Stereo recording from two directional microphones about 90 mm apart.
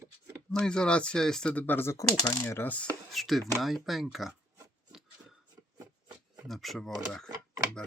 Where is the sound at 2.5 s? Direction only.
25° left (ahead or behind).